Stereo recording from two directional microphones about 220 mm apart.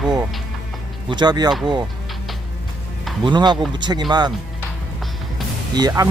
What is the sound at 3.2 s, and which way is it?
Speech, 20° right (ahead or behind).